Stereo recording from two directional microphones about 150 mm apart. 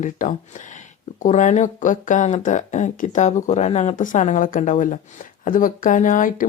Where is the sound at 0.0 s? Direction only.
55° left (ahead or behind).